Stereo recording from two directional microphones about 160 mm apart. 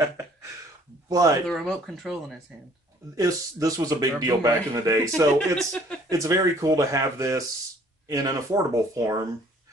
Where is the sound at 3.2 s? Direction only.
20° right (ahead or behind).